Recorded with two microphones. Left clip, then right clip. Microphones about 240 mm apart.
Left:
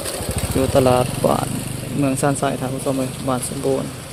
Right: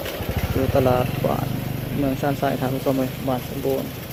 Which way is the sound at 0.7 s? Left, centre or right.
Centre.